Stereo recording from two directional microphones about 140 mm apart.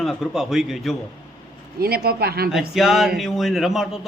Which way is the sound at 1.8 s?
90° right.